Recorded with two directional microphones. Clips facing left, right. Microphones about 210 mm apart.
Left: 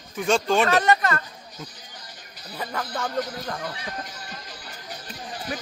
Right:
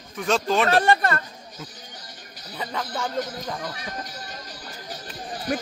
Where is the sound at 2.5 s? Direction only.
Centre (ahead or behind).